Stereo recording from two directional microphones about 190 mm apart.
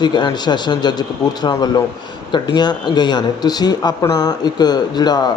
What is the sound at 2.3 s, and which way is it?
A man's voice, 25° left (ahead or behind).